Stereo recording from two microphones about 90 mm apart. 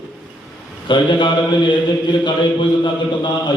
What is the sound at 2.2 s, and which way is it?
A man's voice, 60° left (ahead or behind).